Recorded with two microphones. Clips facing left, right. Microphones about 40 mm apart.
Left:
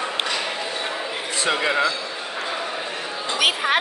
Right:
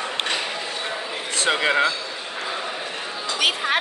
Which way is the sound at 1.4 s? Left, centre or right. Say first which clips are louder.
Right 1 dB; right.